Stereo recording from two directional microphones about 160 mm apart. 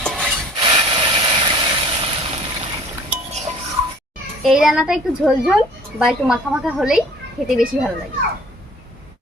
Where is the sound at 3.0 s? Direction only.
45° right (ahead or behind).